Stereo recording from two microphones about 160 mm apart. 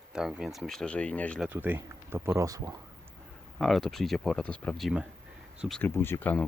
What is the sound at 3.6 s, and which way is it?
Speech, centre (ahead or behind).